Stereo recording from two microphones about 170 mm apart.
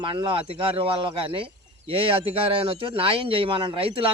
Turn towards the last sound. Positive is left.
turn(degrees=-30)  # may be behind; listen again after turning